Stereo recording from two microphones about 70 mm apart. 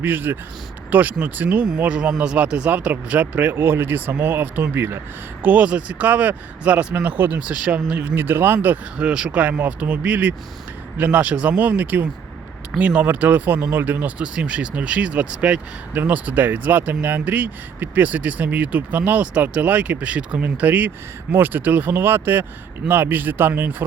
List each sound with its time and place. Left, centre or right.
0.0 s speech: right
3.5 s speech: right
8.1 s speech: right
9.0 s speech: centre; by 23.7 s right